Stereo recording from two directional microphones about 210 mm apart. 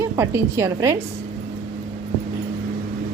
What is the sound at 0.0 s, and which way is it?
Speech, 10° right (ahead or behind).